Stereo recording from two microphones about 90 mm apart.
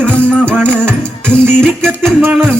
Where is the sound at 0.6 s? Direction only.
20° right (ahead or behind).